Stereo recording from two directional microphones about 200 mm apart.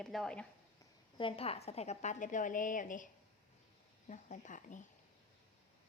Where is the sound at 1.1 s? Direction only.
25° left (ahead or behind).